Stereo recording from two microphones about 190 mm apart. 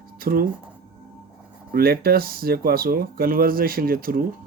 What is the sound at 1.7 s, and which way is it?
Speech, 55° right (ahead or behind).